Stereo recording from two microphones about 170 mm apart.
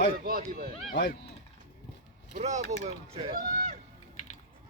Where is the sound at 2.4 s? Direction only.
45° right (ahead or behind).